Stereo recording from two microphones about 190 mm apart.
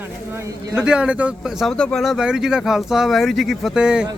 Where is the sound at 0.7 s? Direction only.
5° right (ahead or behind).